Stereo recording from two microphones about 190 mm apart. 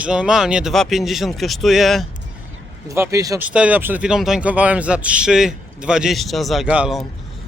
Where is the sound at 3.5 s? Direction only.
5° right (ahead or behind).